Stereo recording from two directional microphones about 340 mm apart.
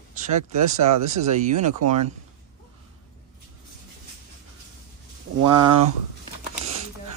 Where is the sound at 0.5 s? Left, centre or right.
Right.